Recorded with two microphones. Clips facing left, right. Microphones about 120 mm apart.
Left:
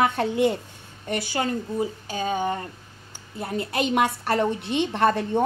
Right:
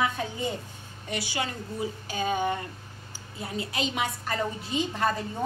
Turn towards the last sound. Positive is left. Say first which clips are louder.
# left 7 dB
turn(degrees=65)  # may be behind; listen again after turning